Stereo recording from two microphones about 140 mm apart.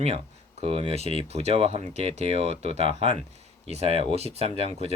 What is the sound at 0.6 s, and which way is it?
Speech, 45° right (ahead or behind).